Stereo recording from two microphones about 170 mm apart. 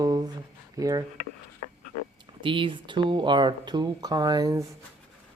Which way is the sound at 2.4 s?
30° right (ahead or behind).